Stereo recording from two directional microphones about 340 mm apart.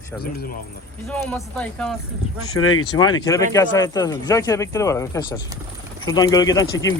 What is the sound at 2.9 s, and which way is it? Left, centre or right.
Speech, centre.